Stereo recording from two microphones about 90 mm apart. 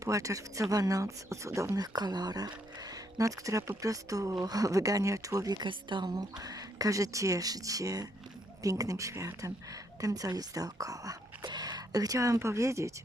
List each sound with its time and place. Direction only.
0.0 s speech: 35° right (ahead or behind)
5.6 s speech: 60° right (ahead or behind); by 11.2 s 40° right (ahead or behind)
11.4 s speech: 50° right (ahead or behind); by 12.9 s 35° right (ahead or behind)